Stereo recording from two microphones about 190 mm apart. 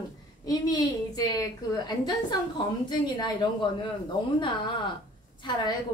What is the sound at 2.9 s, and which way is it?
Speech, 20° left (ahead or behind).